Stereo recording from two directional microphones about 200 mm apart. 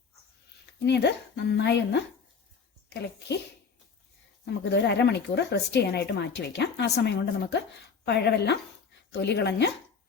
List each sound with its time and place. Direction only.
0.9 s speech: 55° left (ahead or behind)
4.4 s speech: 60° left (ahead or behind)